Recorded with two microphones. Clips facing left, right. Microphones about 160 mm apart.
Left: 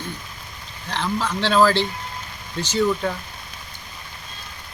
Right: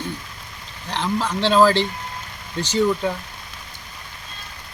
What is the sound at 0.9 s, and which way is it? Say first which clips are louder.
Speech: right 1 dB; 15° right (ahead or behind).